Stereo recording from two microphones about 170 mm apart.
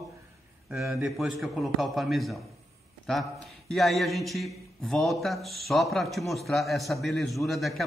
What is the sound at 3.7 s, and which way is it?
A man's voice, centre (ahead or behind).